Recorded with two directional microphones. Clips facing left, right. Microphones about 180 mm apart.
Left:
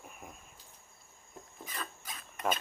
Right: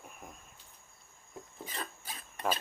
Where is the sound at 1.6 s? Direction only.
30° right (ahead or behind).